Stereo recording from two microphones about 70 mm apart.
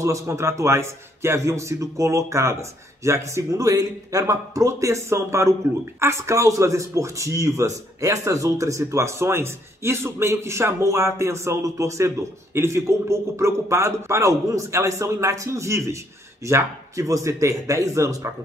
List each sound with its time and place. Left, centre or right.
0.0 s speech: right